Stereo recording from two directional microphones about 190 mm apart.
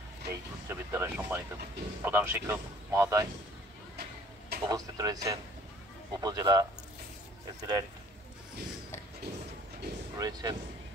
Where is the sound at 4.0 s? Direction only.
55° right (ahead or behind).